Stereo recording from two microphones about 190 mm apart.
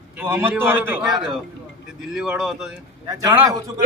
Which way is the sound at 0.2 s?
10° right (ahead or behind).